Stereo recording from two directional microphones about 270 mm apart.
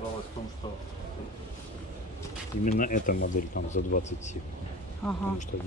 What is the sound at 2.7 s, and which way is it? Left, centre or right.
Speech, left.